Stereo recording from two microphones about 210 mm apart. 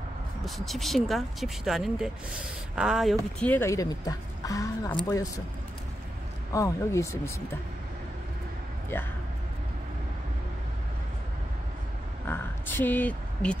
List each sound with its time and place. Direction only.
0.6 s speech: centre (ahead or behind); by 5.3 s 15° left (ahead or behind)
6.5 s speech: 15° left (ahead or behind)
12.3 s a sound: 10° left (ahead or behind)